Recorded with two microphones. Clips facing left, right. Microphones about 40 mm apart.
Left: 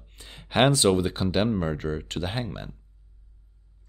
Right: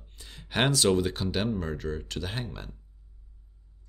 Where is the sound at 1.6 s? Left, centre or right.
Left.